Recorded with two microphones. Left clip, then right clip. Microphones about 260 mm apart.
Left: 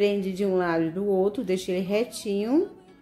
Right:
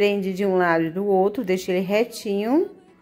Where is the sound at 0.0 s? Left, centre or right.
Centre.